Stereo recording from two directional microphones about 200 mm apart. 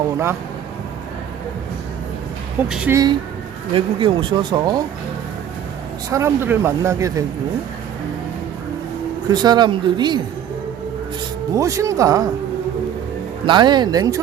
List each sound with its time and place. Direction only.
2.6 s speech: 5° right (ahead or behind)
2.9 s speech: 20° right (ahead or behind)
6.1 s speech: 15° right (ahead or behind)
9.3 s speech: 20° right (ahead or behind)
11.5 s speech: 15° right (ahead or behind)
13.4 s speech: 25° right (ahead or behind)